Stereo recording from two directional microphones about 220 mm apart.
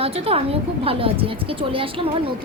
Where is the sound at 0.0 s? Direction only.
25° right (ahead or behind).